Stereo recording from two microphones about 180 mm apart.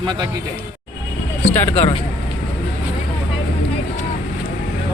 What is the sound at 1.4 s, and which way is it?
Speech, 10° left (ahead or behind).